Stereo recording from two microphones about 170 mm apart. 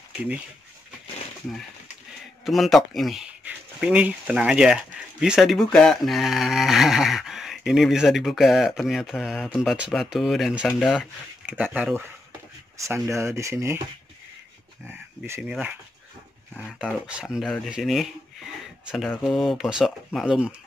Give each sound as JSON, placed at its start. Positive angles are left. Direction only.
{"t": 2.4, "sound": "speech", "side_deg": 0}
{"t": 15.4, "sound": "speech", "side_deg": -5}
{"t": 16.7, "sound": "speech", "side_deg": -5}
{"t": 19.2, "sound": "speech", "side_deg": 0}